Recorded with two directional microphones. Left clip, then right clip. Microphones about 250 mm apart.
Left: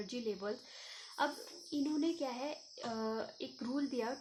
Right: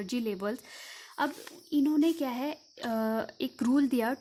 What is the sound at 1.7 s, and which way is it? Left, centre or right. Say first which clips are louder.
Speech: right 10 dB; right.